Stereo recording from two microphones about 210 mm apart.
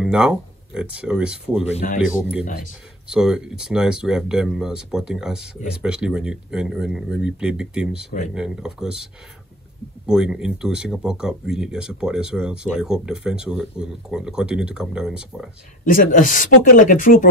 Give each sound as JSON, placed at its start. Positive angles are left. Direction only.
{"t": 0.0, "sound": "speech", "side_deg": -5}
{"t": 2.4, "sound": "speech", "side_deg": 40}
{"t": 3.1, "sound": "speech", "side_deg": -5}
{"t": 15.8, "sound": "speech", "side_deg": 40}